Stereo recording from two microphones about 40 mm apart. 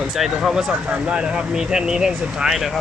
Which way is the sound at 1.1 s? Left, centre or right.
Centre.